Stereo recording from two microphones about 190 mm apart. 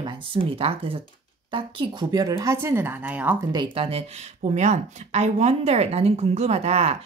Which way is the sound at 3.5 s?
25° right (ahead or behind).